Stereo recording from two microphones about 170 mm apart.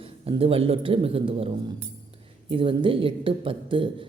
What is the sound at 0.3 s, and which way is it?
Speech, 35° right (ahead or behind).